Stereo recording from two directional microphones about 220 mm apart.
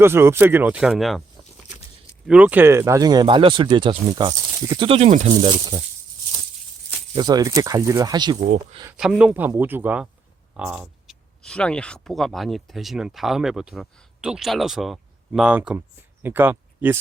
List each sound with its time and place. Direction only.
0.0 s speech: 10° right (ahead or behind)
2.2 s speech: 5° right (ahead or behind)
7.1 s speech: 20° right (ahead or behind)
8.9 s speech: 5° right (ahead or behind)